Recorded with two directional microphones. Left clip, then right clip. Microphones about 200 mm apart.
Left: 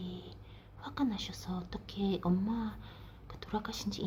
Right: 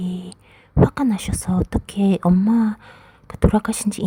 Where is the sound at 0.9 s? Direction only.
55° right (ahead or behind).